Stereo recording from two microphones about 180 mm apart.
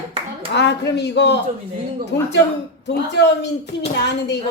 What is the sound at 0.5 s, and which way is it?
Speech, 70° left (ahead or behind).